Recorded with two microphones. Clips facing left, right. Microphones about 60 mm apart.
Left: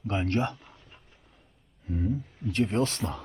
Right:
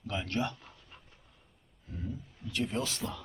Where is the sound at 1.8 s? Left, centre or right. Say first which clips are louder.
Left 11 dB; left.